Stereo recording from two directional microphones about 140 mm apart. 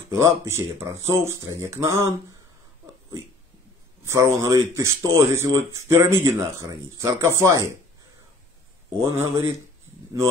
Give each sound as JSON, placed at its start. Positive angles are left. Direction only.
{"t": 0.1, "sound": "speech", "side_deg": -20}
{"t": 4.0, "sound": "speech", "side_deg": -20}
{"t": 9.0, "sound": "speech", "side_deg": -20}